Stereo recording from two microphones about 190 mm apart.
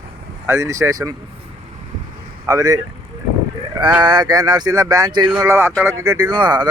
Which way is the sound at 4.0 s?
25° right (ahead or behind).